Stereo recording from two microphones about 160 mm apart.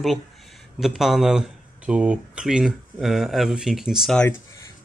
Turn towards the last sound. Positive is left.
turn(degrees=0)  # may be behind; listen again after turning